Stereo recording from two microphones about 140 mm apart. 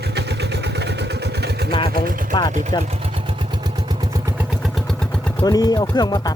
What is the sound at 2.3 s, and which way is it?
Vehicle, 30° left (ahead or behind).